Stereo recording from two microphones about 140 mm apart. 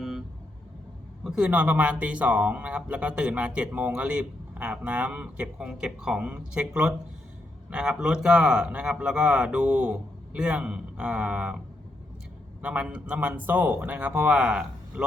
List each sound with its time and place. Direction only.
1.2 s speech: 10° right (ahead or behind)
12.6 s speech: 10° right (ahead or behind)